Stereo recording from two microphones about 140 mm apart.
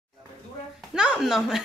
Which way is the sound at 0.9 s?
5° right (ahead or behind).